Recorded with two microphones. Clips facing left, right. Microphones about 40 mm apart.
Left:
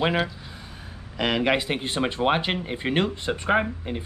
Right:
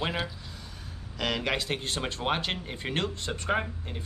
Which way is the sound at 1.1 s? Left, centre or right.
Left.